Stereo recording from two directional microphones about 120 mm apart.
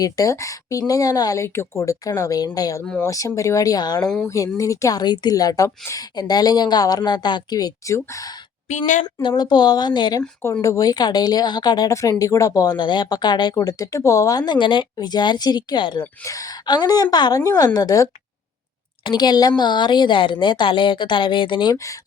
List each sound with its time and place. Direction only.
0.0 s a woman's voice: 25° left (ahead or behind)
8.7 s speech: 75° left (ahead or behind)
9.2 s a woman's voice: 35° left (ahead or behind)
16.2 s a woman's voice: 30° left (ahead or behind)